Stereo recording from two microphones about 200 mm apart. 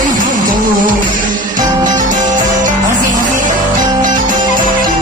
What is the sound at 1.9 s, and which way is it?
Music, 40° right (ahead or behind).